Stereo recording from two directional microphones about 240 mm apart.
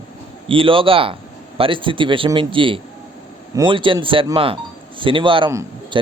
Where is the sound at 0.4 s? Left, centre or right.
Right.